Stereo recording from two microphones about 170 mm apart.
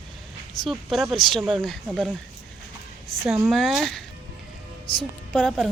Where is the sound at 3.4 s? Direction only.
Centre (ahead or behind).